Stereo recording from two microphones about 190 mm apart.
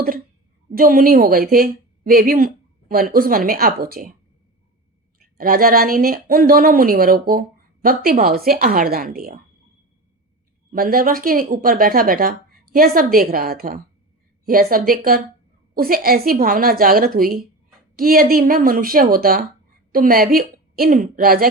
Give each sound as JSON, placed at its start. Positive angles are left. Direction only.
{"t": 0.7, "sound": "speech", "side_deg": -50}
{"t": 5.2, "sound": "speech", "side_deg": -50}
{"t": 10.7, "sound": "speech", "side_deg": -50}